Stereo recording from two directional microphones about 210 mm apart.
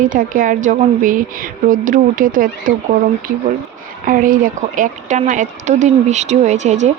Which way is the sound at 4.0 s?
40° right (ahead or behind).